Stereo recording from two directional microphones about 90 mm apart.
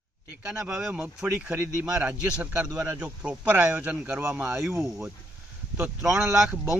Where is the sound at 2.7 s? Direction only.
30° right (ahead or behind).